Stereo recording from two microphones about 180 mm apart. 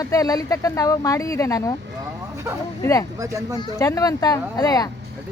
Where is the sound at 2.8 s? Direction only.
15° left (ahead or behind).